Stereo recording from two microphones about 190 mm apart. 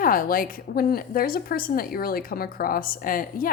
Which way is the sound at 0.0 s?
45° left (ahead or behind).